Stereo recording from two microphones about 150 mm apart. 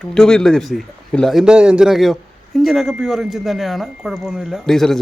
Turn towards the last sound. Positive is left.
turn(degrees=0)  # may be behind; listen again after turning